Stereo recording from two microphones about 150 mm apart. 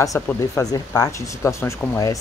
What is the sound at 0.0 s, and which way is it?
Speech, 20° left (ahead or behind).